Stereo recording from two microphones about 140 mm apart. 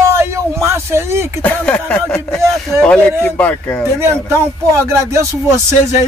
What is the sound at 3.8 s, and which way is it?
Speech, 20° right (ahead or behind).